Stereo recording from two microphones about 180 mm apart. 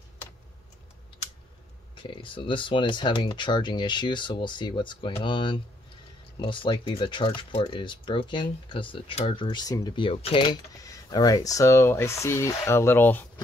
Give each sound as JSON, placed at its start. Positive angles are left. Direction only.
{"t": 2.0, "sound": "speech", "side_deg": 30}